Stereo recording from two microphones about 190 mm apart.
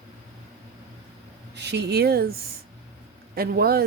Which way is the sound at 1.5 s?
65° right (ahead or behind).